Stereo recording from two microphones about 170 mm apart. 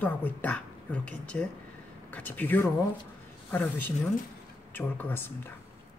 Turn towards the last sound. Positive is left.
turn(degrees=10)  # may be behind; listen again after turning